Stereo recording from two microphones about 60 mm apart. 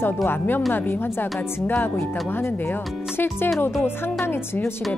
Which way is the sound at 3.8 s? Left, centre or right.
Left.